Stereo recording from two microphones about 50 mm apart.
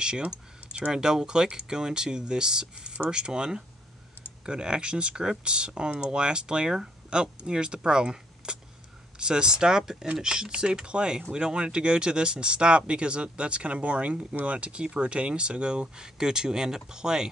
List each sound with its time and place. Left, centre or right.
0.0 s speech: centre